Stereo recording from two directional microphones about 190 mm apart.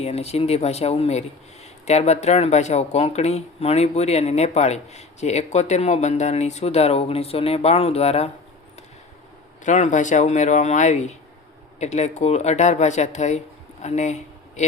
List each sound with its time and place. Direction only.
0.0 s speech: 35° left (ahead or behind)
9.6 s speech: 40° left (ahead or behind)